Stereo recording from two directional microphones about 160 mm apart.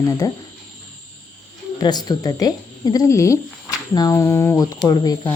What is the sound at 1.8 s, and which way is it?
Speech, 25° left (ahead or behind).